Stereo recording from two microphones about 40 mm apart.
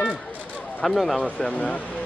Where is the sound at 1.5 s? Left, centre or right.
Left.